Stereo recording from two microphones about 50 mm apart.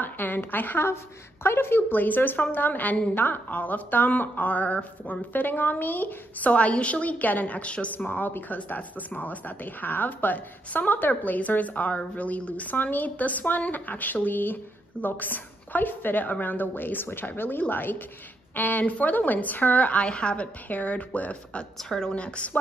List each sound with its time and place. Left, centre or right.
0.0 s a woman's voice: left
1.4 s speech: left
5.3 s speech: left
21.8 s speech: centre